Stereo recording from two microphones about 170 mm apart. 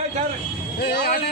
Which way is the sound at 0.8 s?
75° left (ahead or behind).